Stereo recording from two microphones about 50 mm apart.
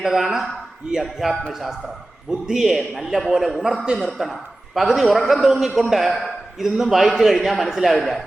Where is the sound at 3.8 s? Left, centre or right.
Centre.